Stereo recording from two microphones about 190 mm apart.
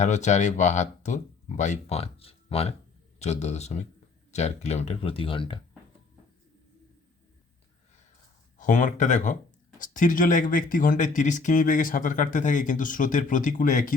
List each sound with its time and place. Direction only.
0.0 s speech: 40° left (ahead or behind)
8.5 s speech: 45° left (ahead or behind)